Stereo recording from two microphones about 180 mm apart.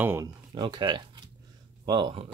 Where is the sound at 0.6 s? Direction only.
25° right (ahead or behind).